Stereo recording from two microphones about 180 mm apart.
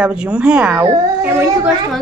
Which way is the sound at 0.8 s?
20° right (ahead or behind).